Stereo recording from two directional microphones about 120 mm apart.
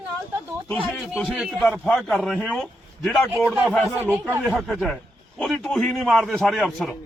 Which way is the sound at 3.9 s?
20° right (ahead or behind).